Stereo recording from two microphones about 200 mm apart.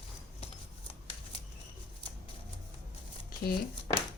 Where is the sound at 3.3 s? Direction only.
45° left (ahead or behind).